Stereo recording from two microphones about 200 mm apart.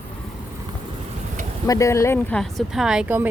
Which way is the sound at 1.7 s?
15° left (ahead or behind).